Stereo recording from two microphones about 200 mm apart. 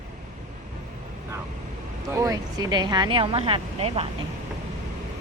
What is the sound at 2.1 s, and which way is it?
Speech, 15° right (ahead or behind).